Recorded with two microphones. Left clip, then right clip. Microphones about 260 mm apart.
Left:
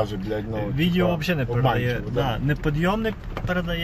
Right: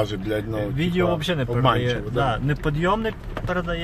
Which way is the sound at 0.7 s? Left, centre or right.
Centre.